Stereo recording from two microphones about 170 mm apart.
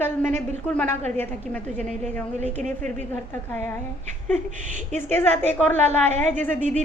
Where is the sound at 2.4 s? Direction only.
40° right (ahead or behind).